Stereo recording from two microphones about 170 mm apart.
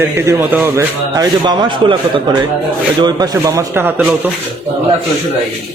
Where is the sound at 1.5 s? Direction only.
25° right (ahead or behind); by 4.3 s 10° right (ahead or behind).